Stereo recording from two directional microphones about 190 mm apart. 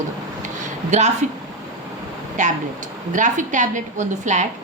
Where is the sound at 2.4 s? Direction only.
40° right (ahead or behind).